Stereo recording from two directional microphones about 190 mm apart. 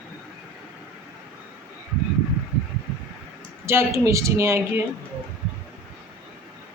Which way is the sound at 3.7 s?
15° right (ahead or behind).